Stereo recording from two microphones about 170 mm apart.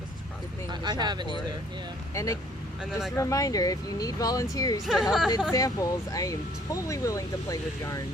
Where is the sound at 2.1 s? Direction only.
20° left (ahead or behind).